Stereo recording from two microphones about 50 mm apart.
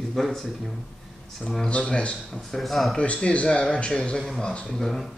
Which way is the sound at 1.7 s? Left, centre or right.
Centre.